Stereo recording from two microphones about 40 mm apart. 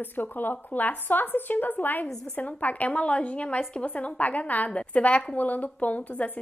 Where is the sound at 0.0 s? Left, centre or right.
Left.